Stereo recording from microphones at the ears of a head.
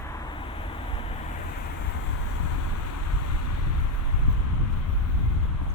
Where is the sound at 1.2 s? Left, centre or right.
Left.